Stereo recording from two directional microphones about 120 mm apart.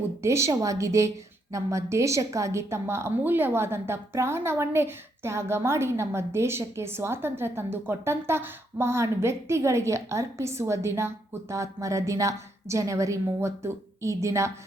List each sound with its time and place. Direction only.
0.2 s a woman's voice: 25° right (ahead or behind)